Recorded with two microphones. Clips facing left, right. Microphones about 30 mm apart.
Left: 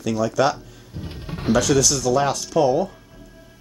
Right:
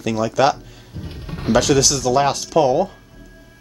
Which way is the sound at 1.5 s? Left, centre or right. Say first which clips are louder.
Right 2 dB; right.